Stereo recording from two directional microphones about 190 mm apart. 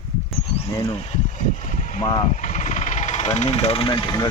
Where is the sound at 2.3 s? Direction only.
40° left (ahead or behind); by 4.2 s 20° left (ahead or behind).